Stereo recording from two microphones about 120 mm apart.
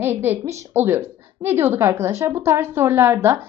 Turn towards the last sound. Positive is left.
turn(degrees=-20)  # may be behind; listen again after turning